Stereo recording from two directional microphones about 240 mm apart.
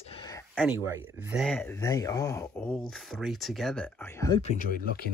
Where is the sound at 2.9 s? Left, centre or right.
Centre.